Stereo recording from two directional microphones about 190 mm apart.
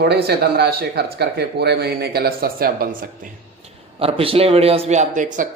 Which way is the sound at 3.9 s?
30° right (ahead or behind).